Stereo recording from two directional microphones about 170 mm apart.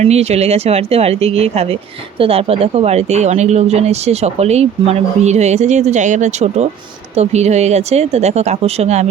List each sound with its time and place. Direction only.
0.0 s speech: 40° right (ahead or behind)